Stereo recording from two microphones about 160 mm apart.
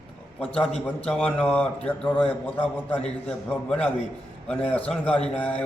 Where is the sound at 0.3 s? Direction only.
10° left (ahead or behind).